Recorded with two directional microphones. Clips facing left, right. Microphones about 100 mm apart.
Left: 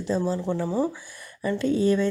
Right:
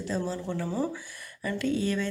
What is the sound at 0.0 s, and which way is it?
Speech, 25° left (ahead or behind).